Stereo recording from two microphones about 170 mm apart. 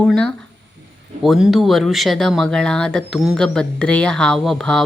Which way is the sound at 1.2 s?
Centre (ahead or behind).